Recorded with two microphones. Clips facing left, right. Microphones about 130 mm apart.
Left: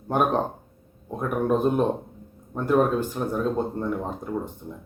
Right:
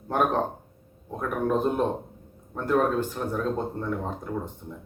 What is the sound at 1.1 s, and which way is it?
Speech, 15° left (ahead or behind).